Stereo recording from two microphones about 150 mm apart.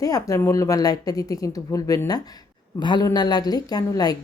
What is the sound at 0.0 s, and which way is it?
A woman's voice, 20° left (ahead or behind).